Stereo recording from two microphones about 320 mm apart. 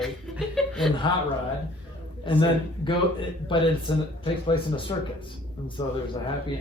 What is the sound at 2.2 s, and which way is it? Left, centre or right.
Speech, centre.